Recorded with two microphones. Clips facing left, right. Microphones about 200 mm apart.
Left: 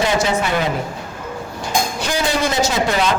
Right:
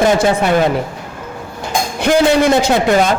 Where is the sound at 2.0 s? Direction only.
55° right (ahead or behind).